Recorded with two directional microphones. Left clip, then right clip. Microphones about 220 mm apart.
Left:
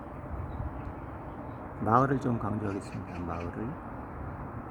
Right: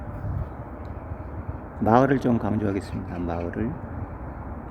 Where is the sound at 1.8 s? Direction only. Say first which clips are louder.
Right 6 dB; 10° right (ahead or behind).